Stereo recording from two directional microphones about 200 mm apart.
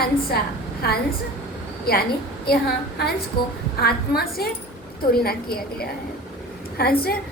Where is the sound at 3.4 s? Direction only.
50° left (ahead or behind).